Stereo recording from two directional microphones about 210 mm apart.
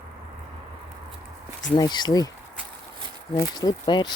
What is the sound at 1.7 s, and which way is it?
Speech, 20° left (ahead or behind).